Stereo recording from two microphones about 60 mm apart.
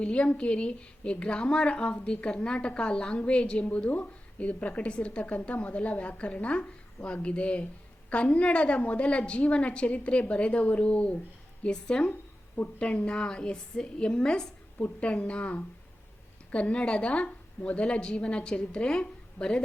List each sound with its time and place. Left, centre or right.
0.0 s a woman's voice: centre
12.6 s speech: left
12.9 s a woman's voice: centre